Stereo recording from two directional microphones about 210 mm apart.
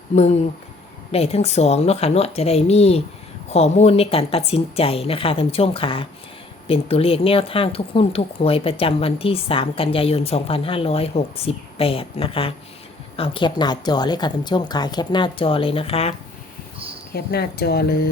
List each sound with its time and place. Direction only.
1.1 s speech: 30° left (ahead or behind)
17.2 s speech: 50° left (ahead or behind)